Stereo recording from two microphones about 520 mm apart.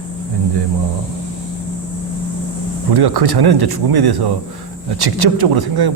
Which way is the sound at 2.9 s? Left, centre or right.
Right.